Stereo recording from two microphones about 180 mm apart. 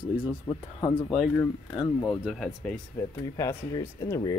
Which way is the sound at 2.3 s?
5° left (ahead or behind).